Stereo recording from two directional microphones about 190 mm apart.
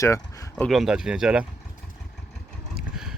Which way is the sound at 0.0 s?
15° left (ahead or behind).